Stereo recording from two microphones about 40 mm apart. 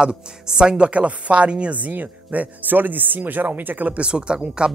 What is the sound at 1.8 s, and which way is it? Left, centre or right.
Speech, right.